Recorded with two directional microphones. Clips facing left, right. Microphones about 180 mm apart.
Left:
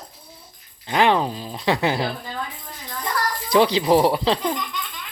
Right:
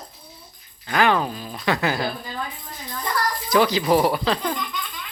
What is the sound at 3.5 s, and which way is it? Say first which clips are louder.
Speech: left 2 dB; 30° left (ahead or behind).